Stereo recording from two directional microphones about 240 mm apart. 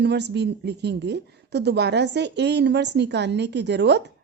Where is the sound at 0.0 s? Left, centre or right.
Right.